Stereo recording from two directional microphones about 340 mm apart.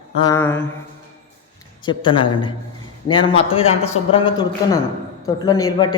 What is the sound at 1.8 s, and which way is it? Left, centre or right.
A man's voice, centre.